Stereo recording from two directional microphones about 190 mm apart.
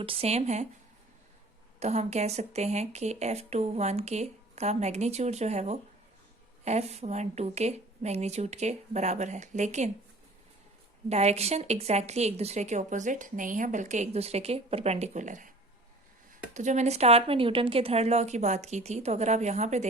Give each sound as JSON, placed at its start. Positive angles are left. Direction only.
{"t": 0.0, "sound": "a woman's voice", "side_deg": -30}
{"t": 1.8, "sound": "a woman's voice", "side_deg": -35}
{"t": 11.1, "sound": "a woman's voice", "side_deg": -35}
{"t": 16.6, "sound": "a woman's voice", "side_deg": -40}